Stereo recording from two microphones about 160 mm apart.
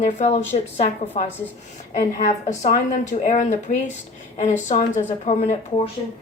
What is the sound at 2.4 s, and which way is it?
A woman's voice, 45° left (ahead or behind).